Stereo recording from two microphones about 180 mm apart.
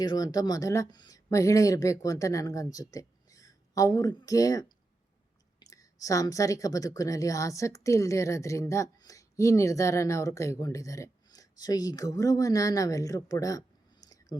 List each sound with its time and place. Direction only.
0.0 s a woman's voice: 20° left (ahead or behind)